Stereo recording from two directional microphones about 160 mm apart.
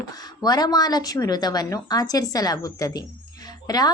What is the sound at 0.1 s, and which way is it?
A woman's voice, 25° left (ahead or behind).